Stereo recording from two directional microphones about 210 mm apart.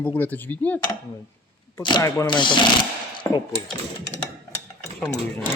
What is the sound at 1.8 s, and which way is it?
Speech, 20° left (ahead or behind).